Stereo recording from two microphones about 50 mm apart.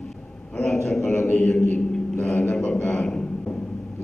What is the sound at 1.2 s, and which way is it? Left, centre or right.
Speech, left.